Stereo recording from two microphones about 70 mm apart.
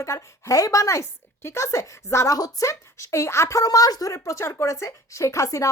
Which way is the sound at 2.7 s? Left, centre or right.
Left.